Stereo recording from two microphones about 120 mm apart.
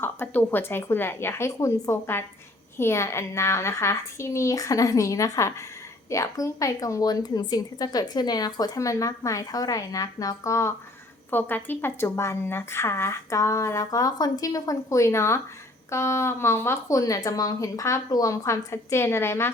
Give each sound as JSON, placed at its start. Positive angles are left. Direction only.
{"t": 0.0, "sound": "a woman's voice", "side_deg": 15}